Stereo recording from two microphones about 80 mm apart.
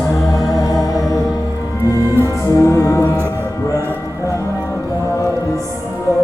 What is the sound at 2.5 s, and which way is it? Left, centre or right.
Music, left.